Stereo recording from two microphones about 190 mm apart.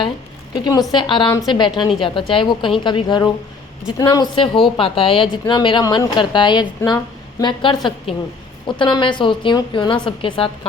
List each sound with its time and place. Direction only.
0.5 s speech: 20° left (ahead or behind)